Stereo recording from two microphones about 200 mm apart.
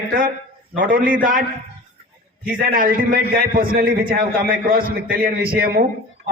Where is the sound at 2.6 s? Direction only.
45° right (ahead or behind).